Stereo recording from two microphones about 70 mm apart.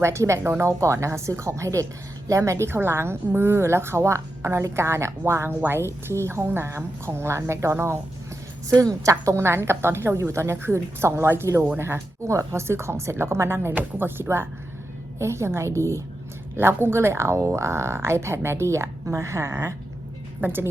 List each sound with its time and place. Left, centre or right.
0.0 s a woman's voice: right
8.7 s a woman's voice: right
16.6 s a woman's voice: right